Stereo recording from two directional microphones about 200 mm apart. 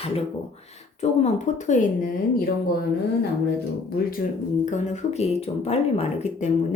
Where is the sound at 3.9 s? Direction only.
45° left (ahead or behind).